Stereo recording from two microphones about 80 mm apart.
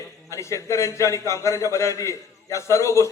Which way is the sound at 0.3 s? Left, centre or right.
Left.